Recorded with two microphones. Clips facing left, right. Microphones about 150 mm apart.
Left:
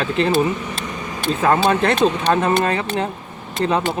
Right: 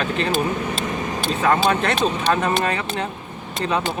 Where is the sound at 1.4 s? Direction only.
35° left (ahead or behind).